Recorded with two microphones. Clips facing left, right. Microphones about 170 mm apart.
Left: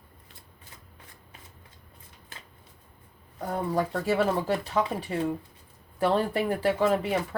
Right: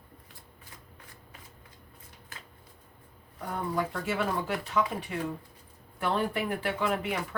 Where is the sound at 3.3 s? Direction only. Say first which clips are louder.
Left 4 dB; 40° left (ahead or behind).